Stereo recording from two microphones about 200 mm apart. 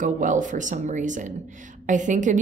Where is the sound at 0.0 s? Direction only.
40° right (ahead or behind).